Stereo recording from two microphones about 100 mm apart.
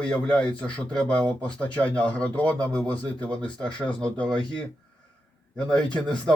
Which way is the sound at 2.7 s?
40° right (ahead or behind).